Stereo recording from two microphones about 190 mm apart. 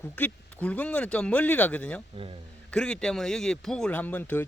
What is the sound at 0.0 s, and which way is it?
Speech, 10° left (ahead or behind).